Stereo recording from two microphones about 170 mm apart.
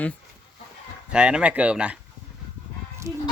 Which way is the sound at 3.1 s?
15° right (ahead or behind).